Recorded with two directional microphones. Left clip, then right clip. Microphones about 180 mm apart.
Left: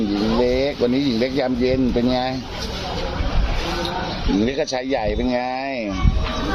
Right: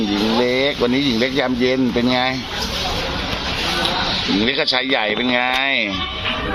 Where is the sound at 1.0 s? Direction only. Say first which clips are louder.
Right 2 dB; 15° left (ahead or behind).